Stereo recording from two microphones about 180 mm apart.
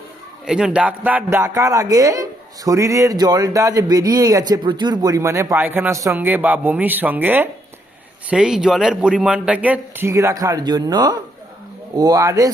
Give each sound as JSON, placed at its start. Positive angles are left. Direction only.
{"t": 0.4, "sound": "speech", "side_deg": -5}